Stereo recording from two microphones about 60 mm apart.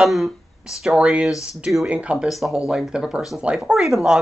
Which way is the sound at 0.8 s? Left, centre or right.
Centre.